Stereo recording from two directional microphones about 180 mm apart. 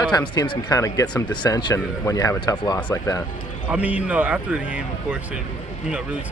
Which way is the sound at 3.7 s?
10° right (ahead or behind).